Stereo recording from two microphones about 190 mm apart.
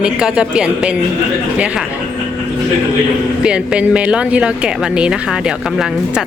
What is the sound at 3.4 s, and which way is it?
A woman's voice, 5° right (ahead or behind).